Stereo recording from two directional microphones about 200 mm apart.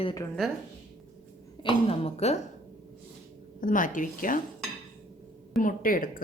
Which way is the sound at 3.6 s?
40° left (ahead or behind).